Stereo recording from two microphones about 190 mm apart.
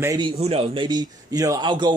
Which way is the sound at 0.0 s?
20° right (ahead or behind).